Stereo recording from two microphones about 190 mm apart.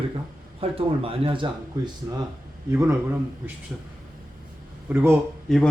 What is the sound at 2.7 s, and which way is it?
Speech, 15° right (ahead or behind).